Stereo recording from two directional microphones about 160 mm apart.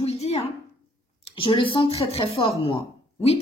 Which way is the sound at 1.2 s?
35° left (ahead or behind).